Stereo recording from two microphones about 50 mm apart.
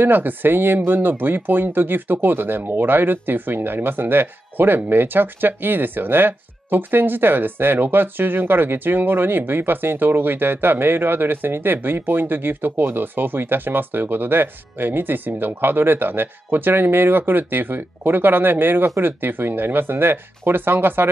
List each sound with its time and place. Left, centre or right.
0.0 s speech: right